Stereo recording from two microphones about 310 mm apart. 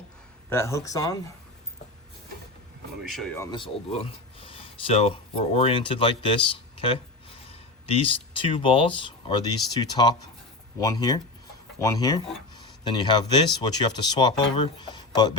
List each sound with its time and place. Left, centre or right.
0.5 s speech: centre
3.0 s speech: centre